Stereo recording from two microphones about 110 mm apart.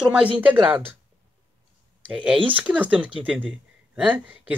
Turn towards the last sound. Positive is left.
turn(degrees=-15)  # may be behind; listen again after turning